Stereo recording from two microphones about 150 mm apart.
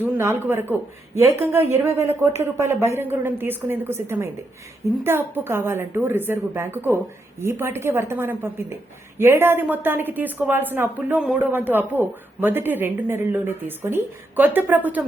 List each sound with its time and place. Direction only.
0.0 s a man's voice: 15° right (ahead or behind)